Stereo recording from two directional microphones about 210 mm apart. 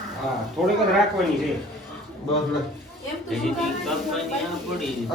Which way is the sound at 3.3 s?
Centre (ahead or behind).